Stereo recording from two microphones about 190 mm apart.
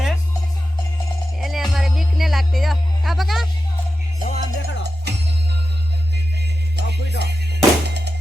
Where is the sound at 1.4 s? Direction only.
Centre (ahead or behind).